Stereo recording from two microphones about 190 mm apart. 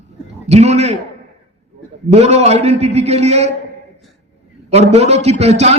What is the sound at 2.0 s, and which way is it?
A man's voice, 35° right (ahead or behind).